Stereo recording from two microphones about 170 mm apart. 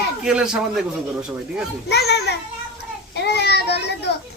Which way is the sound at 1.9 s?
75° left (ahead or behind).